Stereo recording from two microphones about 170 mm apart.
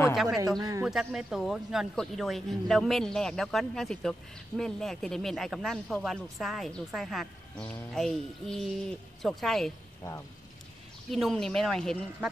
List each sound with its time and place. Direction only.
0.1 s a man's voice: centre (ahead or behind)
0.6 s speech: 20° right (ahead or behind)
0.8 s speech: 5° right (ahead or behind)
11.1 s speech: centre (ahead or behind)